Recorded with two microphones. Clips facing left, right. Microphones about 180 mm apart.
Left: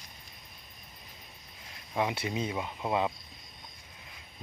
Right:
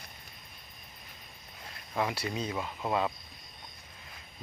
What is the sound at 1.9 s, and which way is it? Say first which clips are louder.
Speech: left 1 dB; 20° left (ahead or behind).